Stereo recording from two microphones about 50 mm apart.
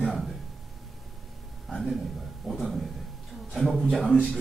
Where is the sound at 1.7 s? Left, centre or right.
Centre.